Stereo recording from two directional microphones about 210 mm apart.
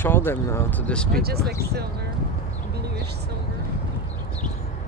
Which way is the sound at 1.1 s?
50° right (ahead or behind).